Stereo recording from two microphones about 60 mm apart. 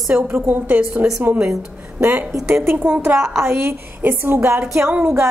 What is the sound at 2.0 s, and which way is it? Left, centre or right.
Music, right.